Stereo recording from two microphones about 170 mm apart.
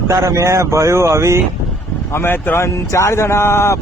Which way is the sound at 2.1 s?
10° left (ahead or behind).